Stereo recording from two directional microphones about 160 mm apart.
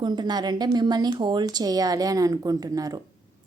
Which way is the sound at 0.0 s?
25° right (ahead or behind).